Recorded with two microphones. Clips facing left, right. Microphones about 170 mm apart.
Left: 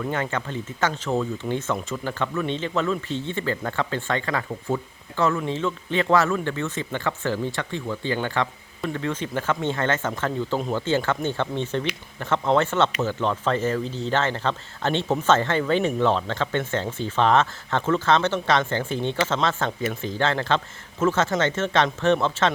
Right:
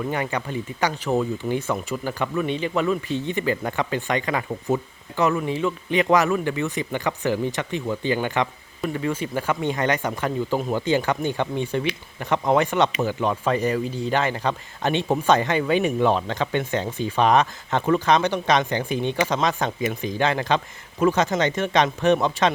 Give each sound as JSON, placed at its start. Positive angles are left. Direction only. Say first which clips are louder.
{"t": 0.1, "sound": "speech", "louder": "right 1 dB", "side_deg": -15}